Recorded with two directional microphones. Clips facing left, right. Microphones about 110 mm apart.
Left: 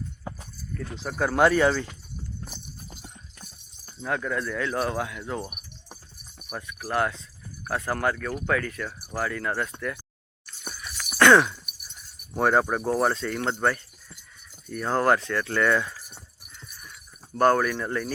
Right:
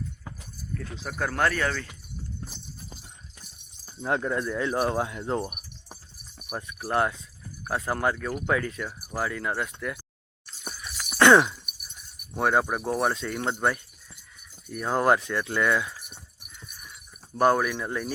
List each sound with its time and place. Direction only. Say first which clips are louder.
0.7 s speech: left 2 dB; 5° left (ahead or behind); by 1.9 s 20° left (ahead or behind)
4.0 s speech: right 2 dB; 25° right (ahead or behind)
4.9 s speech: right 3 dB; 30° right (ahead or behind)
5.4 s keys jangling: right 3 dB; centre (ahead or behind)
6.6 s speech: right 1 dB; 25° right (ahead or behind); by 10.0 s 10° right (ahead or behind)
11.2 s a sound: even; 20° right (ahead or behind)
12.4 s speech: left 2 dB; centre (ahead or behind)
17.3 s speech: left 1 dB; 10° right (ahead or behind)